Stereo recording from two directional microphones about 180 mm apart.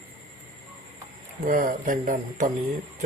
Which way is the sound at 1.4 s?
45° right (ahead or behind).